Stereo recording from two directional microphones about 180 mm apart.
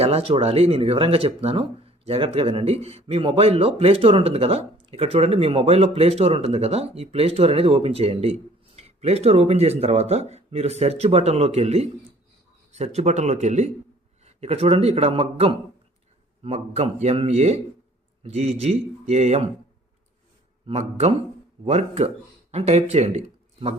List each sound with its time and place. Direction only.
0.0 s speech: 30° right (ahead or behind)
20.7 s speech: 35° right (ahead or behind)